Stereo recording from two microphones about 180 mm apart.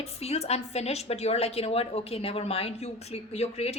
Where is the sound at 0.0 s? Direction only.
35° left (ahead or behind).